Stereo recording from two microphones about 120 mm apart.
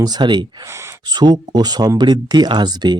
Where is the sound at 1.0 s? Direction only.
35° right (ahead or behind).